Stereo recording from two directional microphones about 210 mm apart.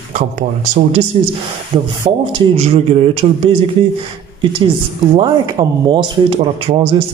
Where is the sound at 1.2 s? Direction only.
30° right (ahead or behind).